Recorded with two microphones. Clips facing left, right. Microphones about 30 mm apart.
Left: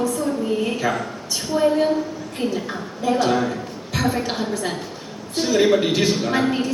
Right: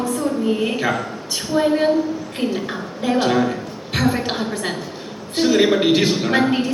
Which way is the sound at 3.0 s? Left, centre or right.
Right.